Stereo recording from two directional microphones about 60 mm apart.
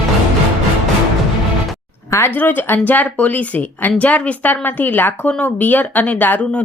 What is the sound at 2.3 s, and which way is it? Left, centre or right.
A woman's voice, left.